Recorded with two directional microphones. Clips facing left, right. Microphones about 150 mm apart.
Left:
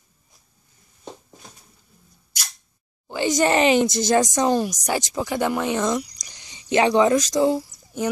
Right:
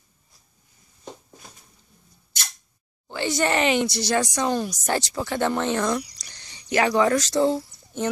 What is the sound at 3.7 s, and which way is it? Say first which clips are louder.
Speech: left 4 dB; 45° left (ahead or behind).